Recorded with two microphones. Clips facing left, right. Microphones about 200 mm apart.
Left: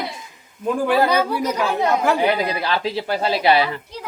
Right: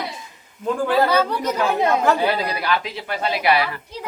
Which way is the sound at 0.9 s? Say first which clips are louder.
Even; 10° left (ahead or behind).